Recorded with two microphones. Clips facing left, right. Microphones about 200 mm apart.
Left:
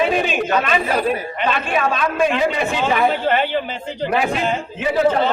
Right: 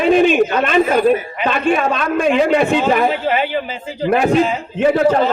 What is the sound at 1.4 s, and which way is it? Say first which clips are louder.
A man's voice: right 1 dB; 50° right (ahead or behind).